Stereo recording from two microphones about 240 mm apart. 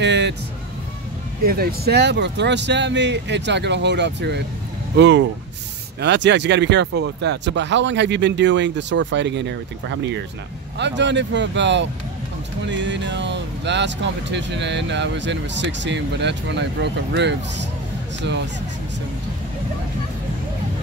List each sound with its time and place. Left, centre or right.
0.0 s speech: right
1.4 s speech: right